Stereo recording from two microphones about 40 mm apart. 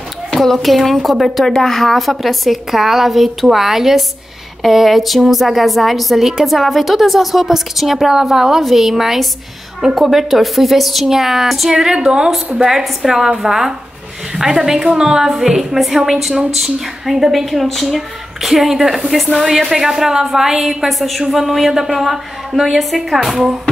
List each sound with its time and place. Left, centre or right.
0.4 s a woman's voice: centre
1.4 s a woman's voice: centre